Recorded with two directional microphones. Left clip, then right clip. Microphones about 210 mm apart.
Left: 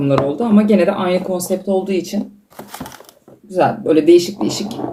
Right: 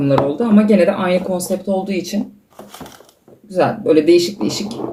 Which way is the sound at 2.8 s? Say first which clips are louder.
Left 3 dB; 45° left (ahead or behind).